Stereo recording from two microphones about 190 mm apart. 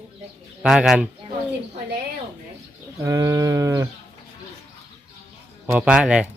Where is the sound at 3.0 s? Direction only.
15° right (ahead or behind).